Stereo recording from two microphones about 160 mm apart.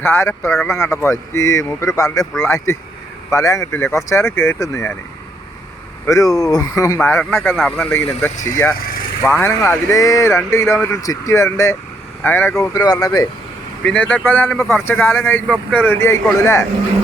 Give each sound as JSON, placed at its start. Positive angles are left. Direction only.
{"t": 0.0, "sound": "speech", "side_deg": 15}
{"t": 6.1, "sound": "speech", "side_deg": 20}
{"t": 7.5, "sound": "speech", "side_deg": 0}
{"t": 7.9, "sound": "speech", "side_deg": 15}
{"t": 13.8, "sound": "speech", "side_deg": 10}